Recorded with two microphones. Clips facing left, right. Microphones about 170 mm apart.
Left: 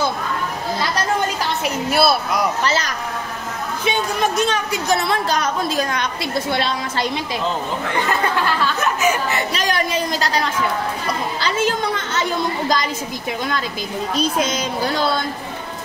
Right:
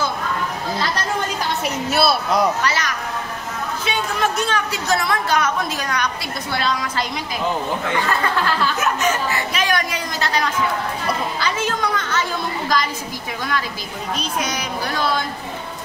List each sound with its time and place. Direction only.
1.9 s speech: centre (ahead or behind)
3.8 s a woman's voice: 15° left (ahead or behind)
8.6 s a sound: 5° right (ahead or behind)
9.5 s a woman's voice: 30° left (ahead or behind)
14.1 s a woman's voice: 25° left (ahead or behind)